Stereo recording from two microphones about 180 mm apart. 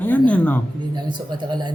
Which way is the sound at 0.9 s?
25° right (ahead or behind).